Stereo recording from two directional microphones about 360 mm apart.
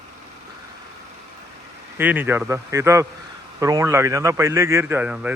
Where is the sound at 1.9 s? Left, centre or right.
Centre.